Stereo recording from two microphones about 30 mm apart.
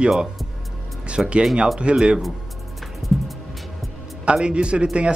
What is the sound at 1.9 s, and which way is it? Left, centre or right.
Speech, right.